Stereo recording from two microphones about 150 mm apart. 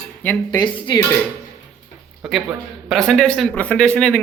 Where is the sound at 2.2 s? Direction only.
Centre (ahead or behind).